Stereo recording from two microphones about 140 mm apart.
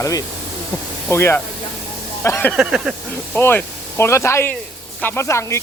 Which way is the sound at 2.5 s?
5° right (ahead or behind).